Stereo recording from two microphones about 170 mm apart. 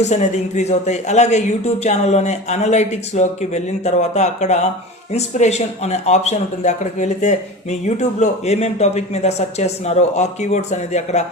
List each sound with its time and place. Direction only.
0.0 s speech: 40° left (ahead or behind)